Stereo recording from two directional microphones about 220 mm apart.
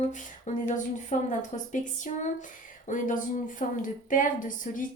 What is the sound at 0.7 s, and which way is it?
A woman's voice, 35° left (ahead or behind).